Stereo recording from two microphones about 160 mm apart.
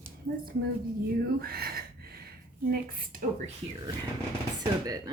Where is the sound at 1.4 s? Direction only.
70° right (ahead or behind).